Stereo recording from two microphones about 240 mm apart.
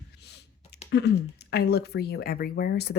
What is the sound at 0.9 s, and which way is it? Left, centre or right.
Speech, left.